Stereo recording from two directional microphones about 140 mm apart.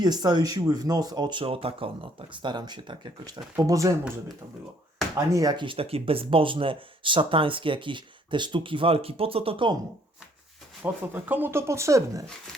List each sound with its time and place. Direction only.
0.0 s speech: 30° right (ahead or behind)
5.1 s speech: 25° right (ahead or behind)
10.8 s speech: 15° right (ahead or behind)